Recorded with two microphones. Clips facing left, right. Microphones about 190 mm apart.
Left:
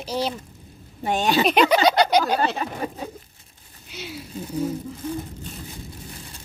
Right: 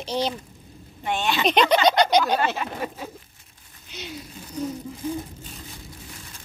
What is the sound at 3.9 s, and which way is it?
Speech, 5° left (ahead or behind).